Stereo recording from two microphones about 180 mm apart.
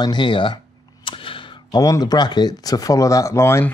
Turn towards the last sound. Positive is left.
turn(degrees=15)  # may be behind; listen again after turning